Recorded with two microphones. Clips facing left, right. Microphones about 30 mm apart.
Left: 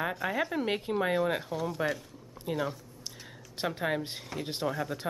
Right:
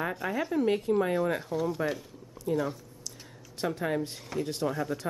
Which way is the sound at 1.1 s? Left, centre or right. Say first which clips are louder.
Right 1 dB; centre.